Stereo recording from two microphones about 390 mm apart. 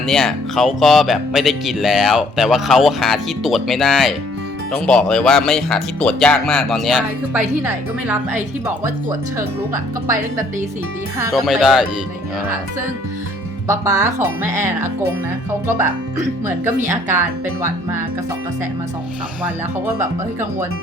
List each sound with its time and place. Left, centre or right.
0.0 s speech: centre
11.2 s speech: centre
13.7 s speech: centre
16.5 s speech: centre
19.4 s speech: centre